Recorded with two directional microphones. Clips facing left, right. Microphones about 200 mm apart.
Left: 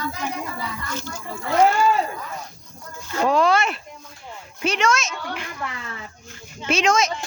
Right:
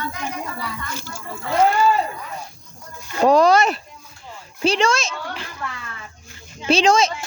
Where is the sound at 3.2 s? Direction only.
40° right (ahead or behind).